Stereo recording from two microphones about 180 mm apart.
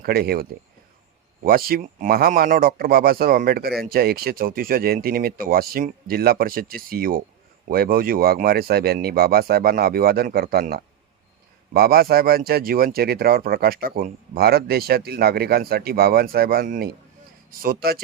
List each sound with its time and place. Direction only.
0.0 s speech: 55° right (ahead or behind)
1.5 s speech: 55° right (ahead or behind)